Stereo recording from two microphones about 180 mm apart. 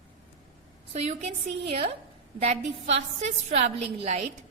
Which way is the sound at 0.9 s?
40° right (ahead or behind).